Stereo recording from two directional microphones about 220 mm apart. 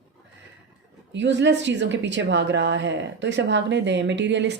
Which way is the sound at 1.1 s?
55° right (ahead or behind).